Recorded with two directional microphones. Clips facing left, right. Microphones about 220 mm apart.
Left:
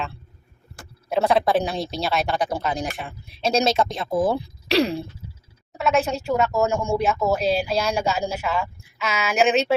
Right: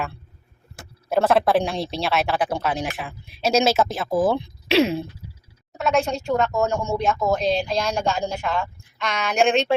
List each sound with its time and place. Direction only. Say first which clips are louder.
1.1 s speech: right 1 dB; centre (ahead or behind)